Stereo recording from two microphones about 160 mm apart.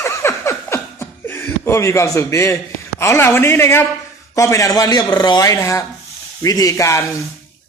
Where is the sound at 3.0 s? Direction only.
15° left (ahead or behind).